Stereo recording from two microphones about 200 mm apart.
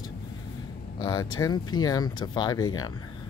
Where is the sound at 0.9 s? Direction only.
20° left (ahead or behind).